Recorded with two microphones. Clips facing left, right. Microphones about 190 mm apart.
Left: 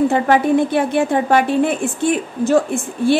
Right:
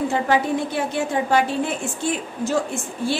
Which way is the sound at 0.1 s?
60° left (ahead or behind).